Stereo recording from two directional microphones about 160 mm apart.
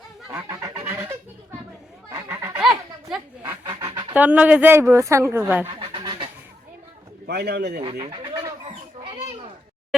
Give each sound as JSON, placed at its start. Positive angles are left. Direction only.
{"t": 0.3, "sound": "goose", "side_deg": -15}
{"t": 2.1, "sound": "goose", "side_deg": -20}
{"t": 3.7, "sound": "a sound", "side_deg": -25}
{"t": 4.1, "sound": "speech", "side_deg": -10}
{"t": 5.6, "sound": "a sound", "side_deg": -35}
{"t": 7.3, "sound": "a man's voice", "side_deg": -90}
{"t": 7.9, "sound": "bird", "side_deg": -25}